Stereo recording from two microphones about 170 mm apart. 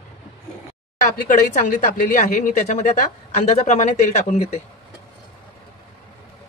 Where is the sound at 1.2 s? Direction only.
50° left (ahead or behind).